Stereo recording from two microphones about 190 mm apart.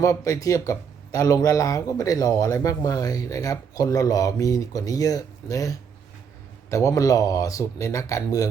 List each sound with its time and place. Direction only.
0.0 s speech: 15° left (ahead or behind)